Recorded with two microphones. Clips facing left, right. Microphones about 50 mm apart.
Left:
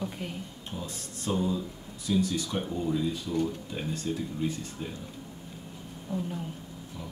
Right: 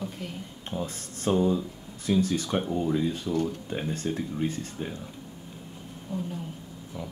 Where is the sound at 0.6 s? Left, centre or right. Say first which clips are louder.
Right 8 dB; right.